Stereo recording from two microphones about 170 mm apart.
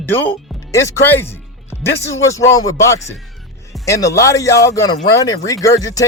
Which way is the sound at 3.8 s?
20° left (ahead or behind).